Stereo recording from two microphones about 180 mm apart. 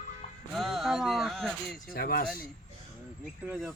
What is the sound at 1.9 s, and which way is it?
Speech, 55° left (ahead or behind).